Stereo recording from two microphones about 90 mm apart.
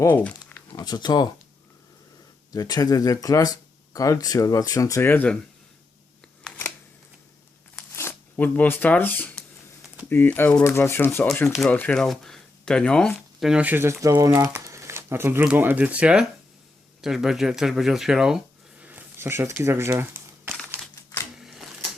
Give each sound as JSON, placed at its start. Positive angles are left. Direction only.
{"t": 0.1, "sound": "speech", "side_deg": 20}
{"t": 0.9, "sound": "speech", "side_deg": 50}
{"t": 2.5, "sound": "speech", "side_deg": 45}
{"t": 5.0, "sound": "speech", "side_deg": 20}
{"t": 7.9, "sound": "speech", "side_deg": 25}
{"t": 13.6, "sound": "speech", "side_deg": -20}
{"t": 14.2, "sound": "speech", "side_deg": -30}
{"t": 18.9, "sound": "crumpling", "side_deg": -20}
{"t": 20.9, "sound": "typewriter", "side_deg": 35}
{"t": 21.3, "sound": "a sound", "side_deg": -5}